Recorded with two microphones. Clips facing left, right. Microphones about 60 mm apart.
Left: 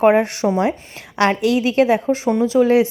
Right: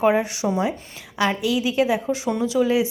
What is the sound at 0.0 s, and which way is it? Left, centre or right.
Speech, left.